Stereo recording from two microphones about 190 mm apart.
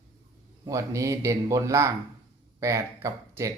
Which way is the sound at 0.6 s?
15° right (ahead or behind).